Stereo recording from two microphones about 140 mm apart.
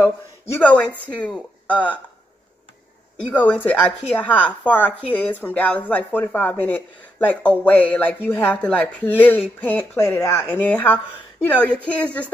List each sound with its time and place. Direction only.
0.0 s speech: 15° left (ahead or behind)
3.3 s speech: 10° left (ahead or behind)